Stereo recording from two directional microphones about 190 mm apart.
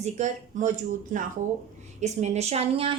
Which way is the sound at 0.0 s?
40° right (ahead or behind).